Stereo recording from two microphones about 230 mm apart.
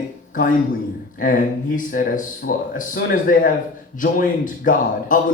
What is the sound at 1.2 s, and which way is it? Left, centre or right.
Speech, left.